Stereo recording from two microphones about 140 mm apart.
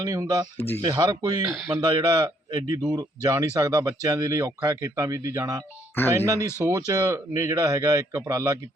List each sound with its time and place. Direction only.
0.0 s speech: 25° right (ahead or behind)